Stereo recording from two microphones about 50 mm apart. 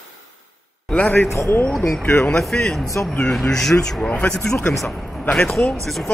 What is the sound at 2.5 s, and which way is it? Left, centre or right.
Speech, left.